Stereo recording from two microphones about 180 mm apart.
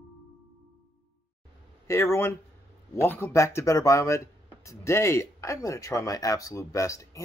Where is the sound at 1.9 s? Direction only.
15° left (ahead or behind).